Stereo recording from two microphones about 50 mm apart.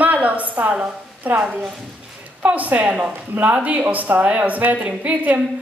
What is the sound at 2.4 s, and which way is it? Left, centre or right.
A woman's voice, right.